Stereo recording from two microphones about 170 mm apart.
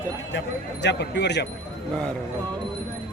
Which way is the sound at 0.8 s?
90° left.